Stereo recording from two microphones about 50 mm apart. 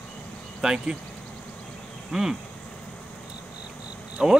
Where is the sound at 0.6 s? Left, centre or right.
Centre.